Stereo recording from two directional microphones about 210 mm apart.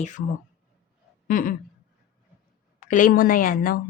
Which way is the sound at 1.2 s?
40° left (ahead or behind).